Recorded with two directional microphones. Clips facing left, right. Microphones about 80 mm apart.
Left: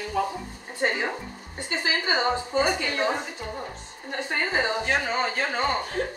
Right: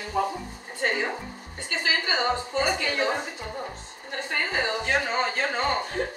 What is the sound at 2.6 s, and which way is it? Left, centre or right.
Speech, centre.